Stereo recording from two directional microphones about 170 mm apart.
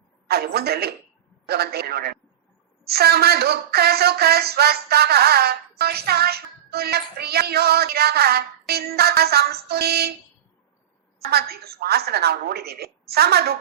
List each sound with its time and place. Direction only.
0.3 s a man's voice: 65° right (ahead or behind)
11.3 s speech: 65° right (ahead or behind)